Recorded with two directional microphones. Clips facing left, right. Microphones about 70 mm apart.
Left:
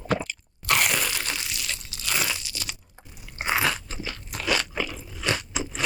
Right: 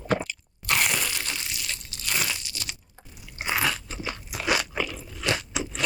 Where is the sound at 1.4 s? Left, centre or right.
Left.